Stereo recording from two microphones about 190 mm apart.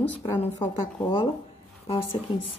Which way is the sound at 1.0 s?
25° left (ahead or behind).